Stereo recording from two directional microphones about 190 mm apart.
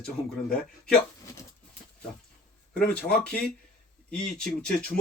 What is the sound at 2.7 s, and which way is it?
Speech, 5° left (ahead or behind).